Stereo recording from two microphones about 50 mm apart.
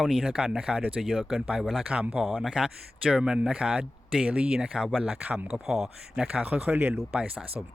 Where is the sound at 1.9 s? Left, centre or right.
Right.